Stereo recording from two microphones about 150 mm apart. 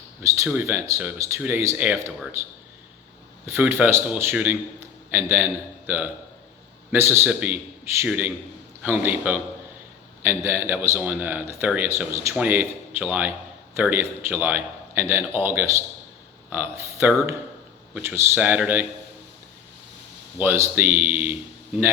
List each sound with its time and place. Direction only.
0.4 s a man's voice: 15° right (ahead or behind)
3.4 s a man's voice: 15° right (ahead or behind)
20.4 s a man's voice: 15° right (ahead or behind)